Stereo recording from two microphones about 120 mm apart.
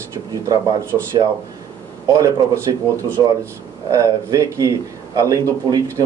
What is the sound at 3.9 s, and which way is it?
A man's voice, 25° right (ahead or behind).